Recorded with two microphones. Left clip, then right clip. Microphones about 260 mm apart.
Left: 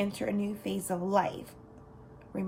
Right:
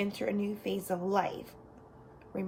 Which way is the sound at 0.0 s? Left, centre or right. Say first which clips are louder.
Left 1 dB; left.